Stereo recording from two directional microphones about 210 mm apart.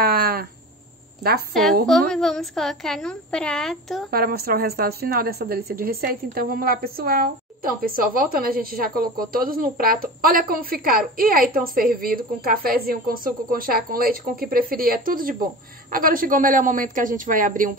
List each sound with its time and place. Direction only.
0.0 s a sound: 45° right (ahead or behind)
1.5 s a woman's voice: centre (ahead or behind)
4.1 s a woman's voice: 45° right (ahead or behind)